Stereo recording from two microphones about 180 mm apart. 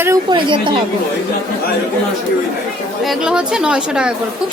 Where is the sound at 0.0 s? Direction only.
20° right (ahead or behind).